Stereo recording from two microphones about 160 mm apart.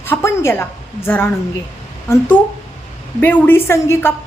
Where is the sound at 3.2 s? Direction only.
10° left (ahead or behind).